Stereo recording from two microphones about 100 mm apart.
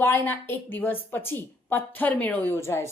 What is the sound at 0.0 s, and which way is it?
A woman's voice, 20° left (ahead or behind).